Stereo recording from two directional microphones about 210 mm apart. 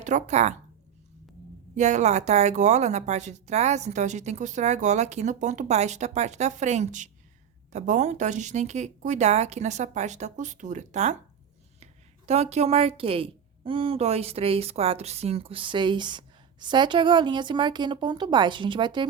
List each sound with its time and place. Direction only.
0.0 s a woman's voice: 35° right (ahead or behind)
1.7 s a woman's voice: 35° right (ahead or behind)